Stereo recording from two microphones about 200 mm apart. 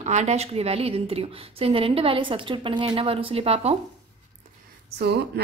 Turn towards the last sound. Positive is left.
turn(degrees=-55)  # may be behind; listen again after turning